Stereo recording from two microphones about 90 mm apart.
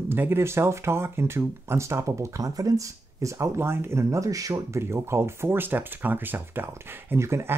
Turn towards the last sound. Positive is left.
turn(degrees=-30)  # may be behind; listen again after turning